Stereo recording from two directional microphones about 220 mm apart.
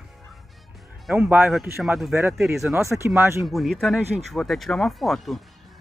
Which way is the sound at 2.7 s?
15° right (ahead or behind).